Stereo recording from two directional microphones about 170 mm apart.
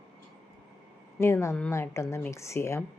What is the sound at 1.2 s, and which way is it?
A woman's voice, 15° left (ahead or behind).